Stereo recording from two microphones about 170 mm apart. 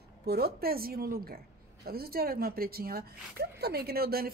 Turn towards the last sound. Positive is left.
turn(degrees=-65)  # may be behind; listen again after turning